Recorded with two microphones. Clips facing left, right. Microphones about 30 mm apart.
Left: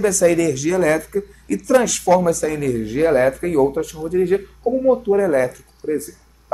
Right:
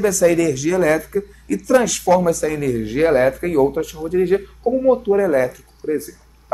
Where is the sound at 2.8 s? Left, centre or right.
Right.